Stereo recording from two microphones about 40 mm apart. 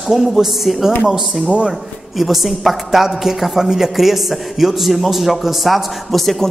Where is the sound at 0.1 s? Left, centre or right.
Centre.